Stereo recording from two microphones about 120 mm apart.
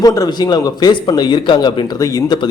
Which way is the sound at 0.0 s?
30° left (ahead or behind).